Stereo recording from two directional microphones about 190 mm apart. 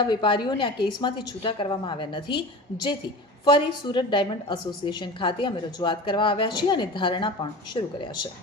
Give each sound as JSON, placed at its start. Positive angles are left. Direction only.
{"t": 0.0, "sound": "a woman's voice", "side_deg": 25}
{"t": 3.4, "sound": "a woman's voice", "side_deg": 25}